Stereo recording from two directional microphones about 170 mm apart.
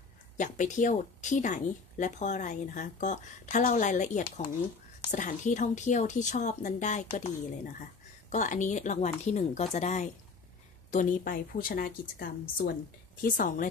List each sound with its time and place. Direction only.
0.4 s speech: 45° left (ahead or behind)
8.3 s a woman's voice: 45° left (ahead or behind)